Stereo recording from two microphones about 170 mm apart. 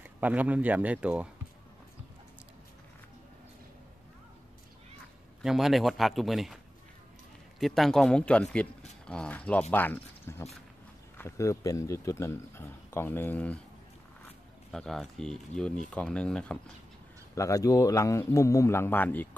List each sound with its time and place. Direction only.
0.0 s speech: 10° right (ahead or behind)
5.4 s a man's voice: centre (ahead or behind)
7.6 s a man's voice: centre (ahead or behind)
14.7 s a man's voice: centre (ahead or behind)
17.4 s speech: 20° left (ahead or behind)